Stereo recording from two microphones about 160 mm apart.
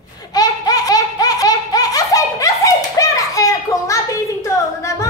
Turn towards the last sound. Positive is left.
turn(degrees=20)  # may be behind; listen again after turning